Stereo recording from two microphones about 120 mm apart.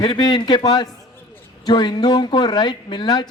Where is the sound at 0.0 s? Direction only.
40° left (ahead or behind).